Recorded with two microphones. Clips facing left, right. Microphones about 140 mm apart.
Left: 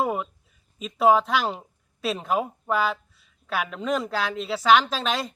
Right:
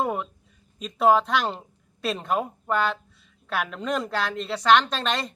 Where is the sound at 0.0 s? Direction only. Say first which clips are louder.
Left 1 dB; 5° left (ahead or behind).